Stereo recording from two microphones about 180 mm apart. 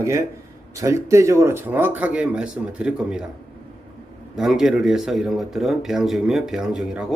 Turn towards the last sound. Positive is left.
turn(degrees=-5)  # may be behind; listen again after turning